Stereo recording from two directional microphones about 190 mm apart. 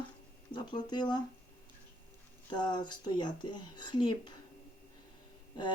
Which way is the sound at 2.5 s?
25° left (ahead or behind).